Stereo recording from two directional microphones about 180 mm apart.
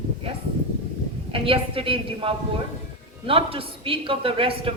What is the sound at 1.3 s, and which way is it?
A woman's voice, 30° right (ahead or behind).